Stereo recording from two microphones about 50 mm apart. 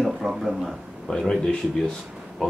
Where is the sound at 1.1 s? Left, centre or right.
Centre.